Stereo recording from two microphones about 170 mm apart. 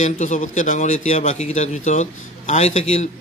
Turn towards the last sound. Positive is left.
turn(degrees=40)  # may be behind; listen again after turning